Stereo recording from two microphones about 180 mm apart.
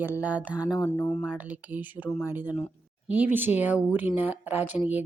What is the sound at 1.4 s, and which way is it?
Speech, 10° right (ahead or behind).